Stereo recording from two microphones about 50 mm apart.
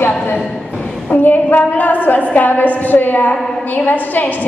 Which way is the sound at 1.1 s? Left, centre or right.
Left.